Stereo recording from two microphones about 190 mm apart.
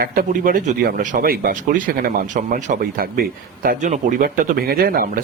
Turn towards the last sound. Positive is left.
turn(degrees=-50)  # may be behind; listen again after turning